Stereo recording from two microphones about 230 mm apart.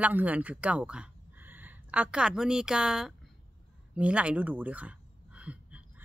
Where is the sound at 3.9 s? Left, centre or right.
Centre.